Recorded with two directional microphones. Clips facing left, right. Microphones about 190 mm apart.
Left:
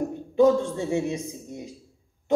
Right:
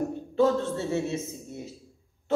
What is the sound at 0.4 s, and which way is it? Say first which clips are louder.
Speech: left 4 dB; 15° left (ahead or behind).